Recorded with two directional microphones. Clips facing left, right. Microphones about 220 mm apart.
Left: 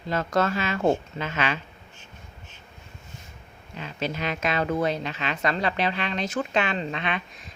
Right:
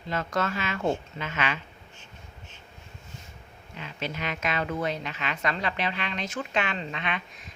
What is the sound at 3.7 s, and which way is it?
A woman's voice, 35° left (ahead or behind).